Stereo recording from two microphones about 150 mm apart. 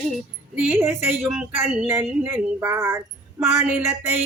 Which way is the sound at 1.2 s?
5° right (ahead or behind).